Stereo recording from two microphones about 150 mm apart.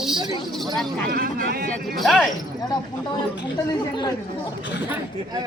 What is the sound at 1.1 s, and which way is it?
Speech, 75° right (ahead or behind).